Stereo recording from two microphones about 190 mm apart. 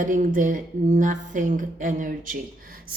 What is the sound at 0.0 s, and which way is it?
A woman's voice, 45° right (ahead or behind).